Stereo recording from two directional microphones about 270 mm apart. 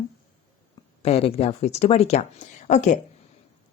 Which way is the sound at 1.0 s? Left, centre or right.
Left.